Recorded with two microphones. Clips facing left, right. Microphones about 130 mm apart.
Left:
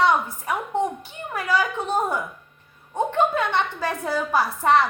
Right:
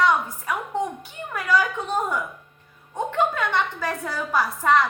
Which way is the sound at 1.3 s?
30° left (ahead or behind).